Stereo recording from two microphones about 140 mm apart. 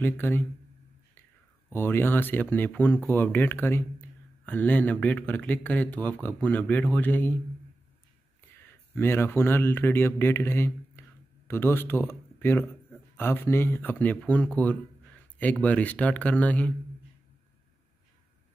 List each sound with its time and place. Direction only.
0.0 s speech: 15° left (ahead or behind)
1.7 s speech: 15° left (ahead or behind)
8.9 s speech: 15° left (ahead or behind)